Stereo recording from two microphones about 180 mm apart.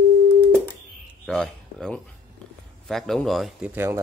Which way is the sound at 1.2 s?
5° left (ahead or behind).